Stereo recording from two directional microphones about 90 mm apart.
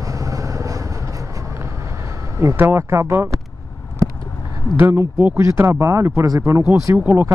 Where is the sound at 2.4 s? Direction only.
25° right (ahead or behind).